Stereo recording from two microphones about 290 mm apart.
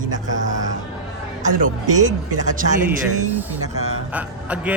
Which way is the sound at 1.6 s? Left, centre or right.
Right.